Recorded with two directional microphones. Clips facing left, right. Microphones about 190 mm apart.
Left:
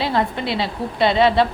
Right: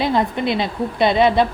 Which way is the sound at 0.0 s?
15° right (ahead or behind).